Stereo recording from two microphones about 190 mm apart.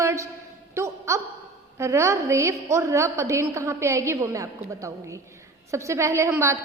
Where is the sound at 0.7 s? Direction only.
15° right (ahead or behind).